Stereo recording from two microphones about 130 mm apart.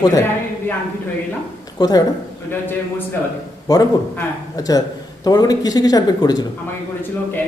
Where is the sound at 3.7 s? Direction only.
30° left (ahead or behind).